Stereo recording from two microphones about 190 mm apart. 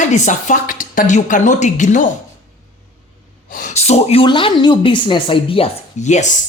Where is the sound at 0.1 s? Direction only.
40° left (ahead or behind).